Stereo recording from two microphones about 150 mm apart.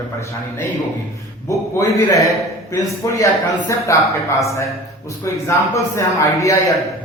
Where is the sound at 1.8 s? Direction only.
20° left (ahead or behind).